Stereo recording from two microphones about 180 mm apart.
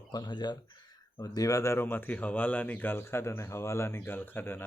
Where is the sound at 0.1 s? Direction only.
25° left (ahead or behind).